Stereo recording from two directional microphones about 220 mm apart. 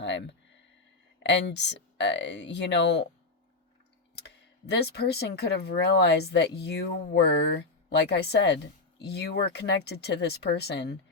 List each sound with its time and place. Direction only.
0.0 s a sound: 55° left (ahead or behind)
1.2 s speech: 50° left (ahead or behind)
4.6 s speech: 50° left (ahead or behind)